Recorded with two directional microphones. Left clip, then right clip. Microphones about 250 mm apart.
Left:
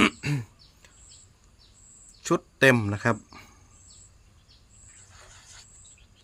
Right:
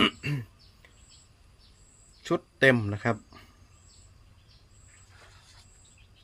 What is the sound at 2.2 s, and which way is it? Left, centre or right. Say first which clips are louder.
Speech: left 2 dB; left.